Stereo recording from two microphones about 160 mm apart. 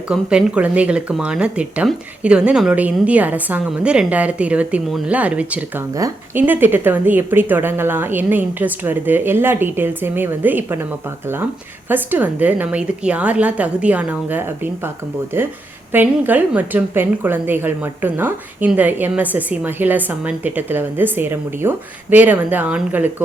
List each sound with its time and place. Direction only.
0.1 s a woman's voice: 5° right (ahead or behind)
5.9 s a woman's voice: 20° right (ahead or behind)
11.9 s a woman's voice: 10° right (ahead or behind)